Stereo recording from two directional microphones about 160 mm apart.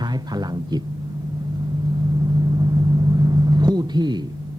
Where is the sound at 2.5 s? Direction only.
25° right (ahead or behind).